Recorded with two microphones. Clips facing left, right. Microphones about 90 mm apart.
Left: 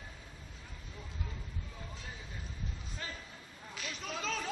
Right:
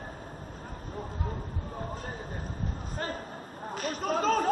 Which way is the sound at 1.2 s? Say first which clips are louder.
Right 10 dB; 45° right (ahead or behind).